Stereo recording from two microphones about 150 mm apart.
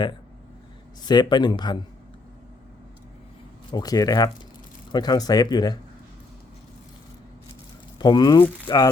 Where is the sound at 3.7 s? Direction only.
25° left (ahead or behind).